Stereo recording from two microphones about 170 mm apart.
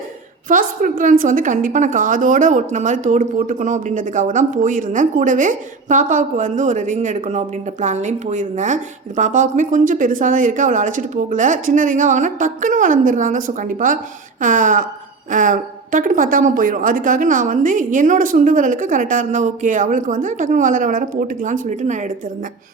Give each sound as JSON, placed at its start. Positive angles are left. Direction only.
{"t": 0.4, "sound": "a woman's voice", "side_deg": -55}